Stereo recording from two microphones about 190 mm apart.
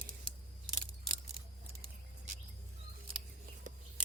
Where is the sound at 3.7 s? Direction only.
40° right (ahead or behind).